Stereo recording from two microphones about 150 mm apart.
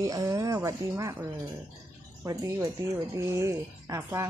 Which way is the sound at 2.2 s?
25° right (ahead or behind).